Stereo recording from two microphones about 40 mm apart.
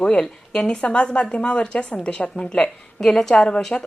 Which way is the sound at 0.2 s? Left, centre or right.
Centre.